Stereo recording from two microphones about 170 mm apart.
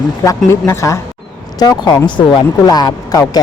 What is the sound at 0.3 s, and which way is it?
A woman's voice, 20° left (ahead or behind).